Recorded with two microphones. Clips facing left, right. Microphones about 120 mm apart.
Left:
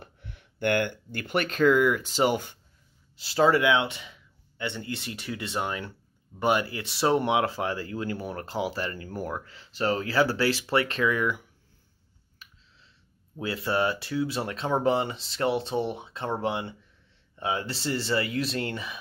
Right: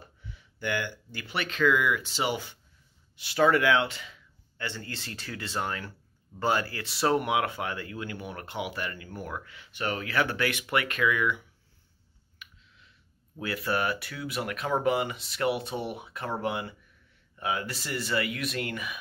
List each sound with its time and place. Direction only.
0.0 s speech: 60° left (ahead or behind); by 2.5 s 45° left (ahead or behind)
3.2 s speech: 30° left (ahead or behind)
12.4 s a sound: 35° left (ahead or behind)
13.4 s speech: 25° left (ahead or behind)